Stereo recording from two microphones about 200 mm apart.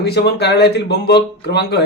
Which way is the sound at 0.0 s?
55° left (ahead or behind).